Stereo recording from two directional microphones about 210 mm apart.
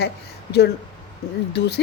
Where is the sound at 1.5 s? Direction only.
50° left (ahead or behind).